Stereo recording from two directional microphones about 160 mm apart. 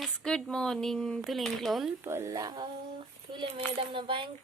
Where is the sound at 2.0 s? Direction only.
15° right (ahead or behind).